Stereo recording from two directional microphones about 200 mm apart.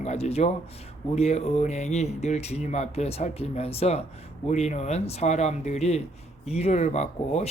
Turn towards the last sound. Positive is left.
turn(degrees=35)  # may be behind; listen again after turning